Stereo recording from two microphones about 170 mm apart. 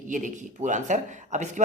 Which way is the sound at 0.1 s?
45° right (ahead or behind).